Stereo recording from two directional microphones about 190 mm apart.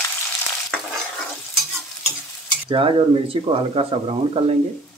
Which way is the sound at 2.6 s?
25° right (ahead or behind).